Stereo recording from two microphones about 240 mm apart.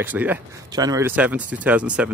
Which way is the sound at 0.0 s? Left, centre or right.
Centre.